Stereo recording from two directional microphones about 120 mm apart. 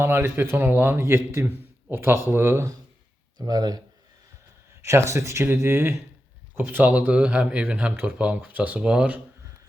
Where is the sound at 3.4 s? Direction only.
30° right (ahead or behind).